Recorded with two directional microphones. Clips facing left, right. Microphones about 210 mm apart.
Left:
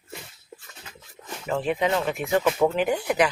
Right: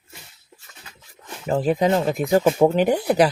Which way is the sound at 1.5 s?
40° right (ahead or behind).